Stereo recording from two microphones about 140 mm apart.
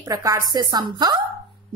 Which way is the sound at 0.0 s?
25° right (ahead or behind).